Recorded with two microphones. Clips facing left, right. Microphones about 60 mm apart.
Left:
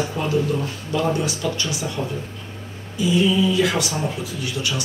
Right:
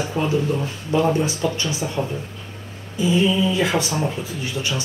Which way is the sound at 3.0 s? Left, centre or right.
Right.